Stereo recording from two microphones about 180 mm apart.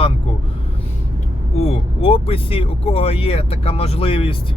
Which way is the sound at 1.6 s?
30° left (ahead or behind).